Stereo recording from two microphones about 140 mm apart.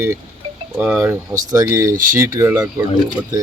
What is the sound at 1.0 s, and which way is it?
Speech, 20° right (ahead or behind).